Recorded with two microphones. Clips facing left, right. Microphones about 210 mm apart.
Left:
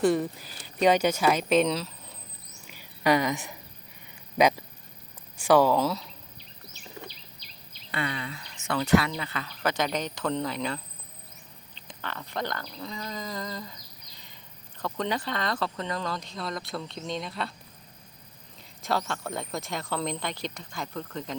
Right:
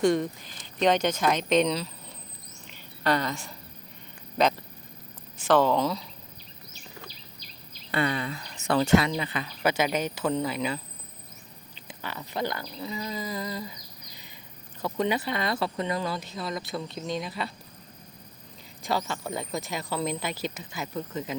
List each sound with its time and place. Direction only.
0.0 s speech: 5° left (ahead or behind)
2.6 s a sound: 10° left (ahead or behind)
4.4 s speech: 10° left (ahead or behind)
7.9 s speech: 40° right (ahead or behind); by 13.7 s 10° right (ahead or behind)
14.8 s speech: 10° right (ahead or behind)
18.8 s speech: centre (ahead or behind)